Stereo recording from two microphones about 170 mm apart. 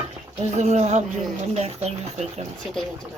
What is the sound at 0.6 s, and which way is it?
Speech, 40° right (ahead or behind).